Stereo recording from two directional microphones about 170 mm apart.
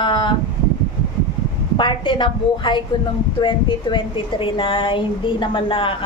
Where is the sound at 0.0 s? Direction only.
30° left (ahead or behind).